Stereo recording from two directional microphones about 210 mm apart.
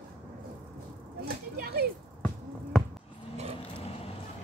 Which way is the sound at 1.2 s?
50° right (ahead or behind).